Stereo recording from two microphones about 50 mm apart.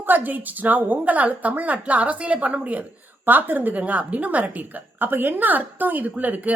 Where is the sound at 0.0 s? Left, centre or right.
Right.